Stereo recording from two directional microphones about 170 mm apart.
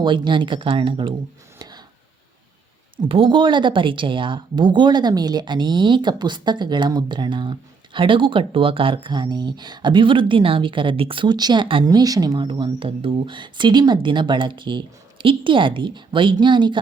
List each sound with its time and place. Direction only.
0.0 s speech: 30° right (ahead or behind)
1.5 s a sound: 25° right (ahead or behind)
3.0 s speech: 30° right (ahead or behind)